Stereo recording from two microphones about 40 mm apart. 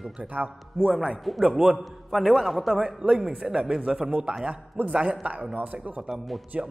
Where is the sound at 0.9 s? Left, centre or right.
Centre.